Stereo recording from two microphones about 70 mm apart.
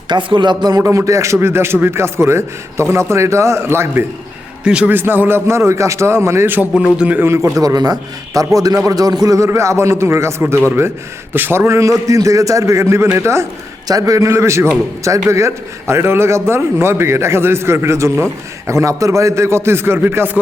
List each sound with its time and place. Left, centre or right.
0.1 s speech: right
0.8 s a man's voice: right
4.6 s a man's voice: centre
4.9 s a man's voice: right
7.0 s a man's voice: right
7.3 s a man's voice: right
7.6 s a man's voice: right
9.5 s a man's voice: right
11.3 s a man's voice: right
13.8 s a man's voice: right